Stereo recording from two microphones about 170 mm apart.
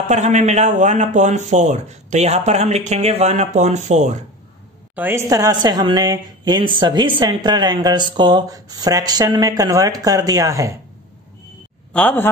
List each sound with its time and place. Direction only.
0.0 s speech: 40° right (ahead or behind)
4.9 s a woman's voice: 15° right (ahead or behind)
11.9 s speech: 10° left (ahead or behind)